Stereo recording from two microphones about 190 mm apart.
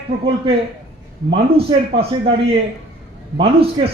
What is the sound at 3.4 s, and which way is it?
Speech, 30° right (ahead or behind).